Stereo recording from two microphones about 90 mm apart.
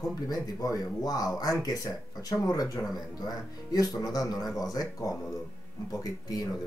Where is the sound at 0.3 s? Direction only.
45° left (ahead or behind).